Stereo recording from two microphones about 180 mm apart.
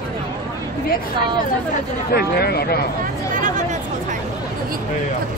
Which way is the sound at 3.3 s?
45° right (ahead or behind).